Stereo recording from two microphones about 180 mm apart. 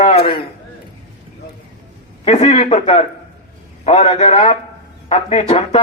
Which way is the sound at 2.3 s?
35° left (ahead or behind).